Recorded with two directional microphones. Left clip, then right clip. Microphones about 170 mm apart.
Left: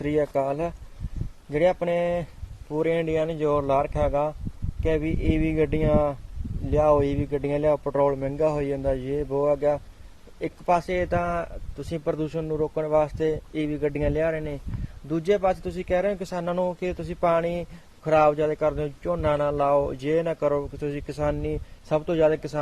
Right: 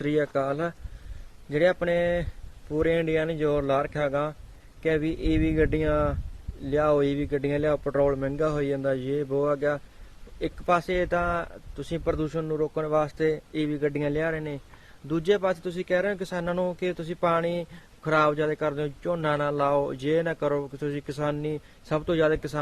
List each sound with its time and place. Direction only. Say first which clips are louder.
0.3 s a man's voice: left 2 dB; 15° right (ahead or behind)
6.7 s a man's voice: left 2 dB; 20° right (ahead or behind)